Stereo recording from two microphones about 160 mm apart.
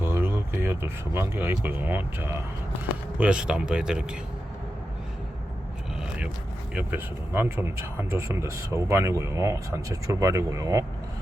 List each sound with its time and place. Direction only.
0.0 s speech: 15° right (ahead or behind)
6.7 s speech: 10° right (ahead or behind)